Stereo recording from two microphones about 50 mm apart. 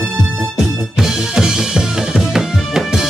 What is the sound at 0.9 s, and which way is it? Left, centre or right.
Drum kit, centre.